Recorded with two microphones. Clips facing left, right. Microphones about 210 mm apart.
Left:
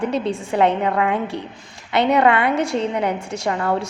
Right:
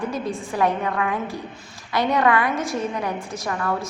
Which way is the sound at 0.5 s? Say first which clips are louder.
Left 4 dB; 25° left (ahead or behind).